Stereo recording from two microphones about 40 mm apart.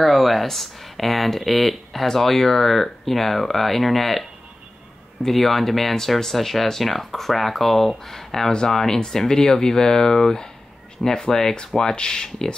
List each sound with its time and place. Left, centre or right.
0.0 s speech: centre
8.5 s speech: centre